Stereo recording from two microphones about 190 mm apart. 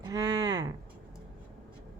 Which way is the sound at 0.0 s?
20° right (ahead or behind).